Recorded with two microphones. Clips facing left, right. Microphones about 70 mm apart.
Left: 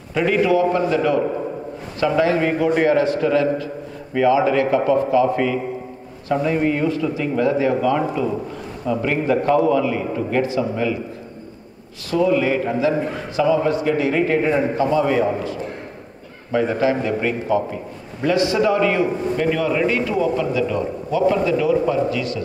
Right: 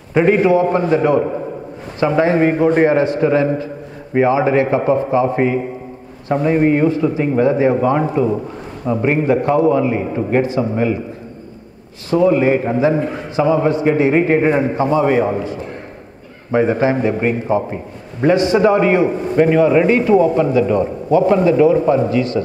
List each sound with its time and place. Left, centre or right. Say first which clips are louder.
0.1 s a man's voice: right 5 dB; right
12.1 s a man's voice: right 5 dB; right